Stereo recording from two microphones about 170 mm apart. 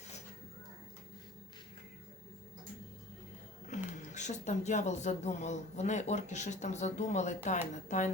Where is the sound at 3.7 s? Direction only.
45° left (ahead or behind).